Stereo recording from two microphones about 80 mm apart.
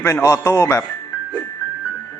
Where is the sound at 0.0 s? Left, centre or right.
Left.